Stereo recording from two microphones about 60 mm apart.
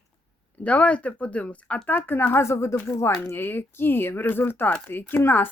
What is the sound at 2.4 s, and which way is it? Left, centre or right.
Speech, left.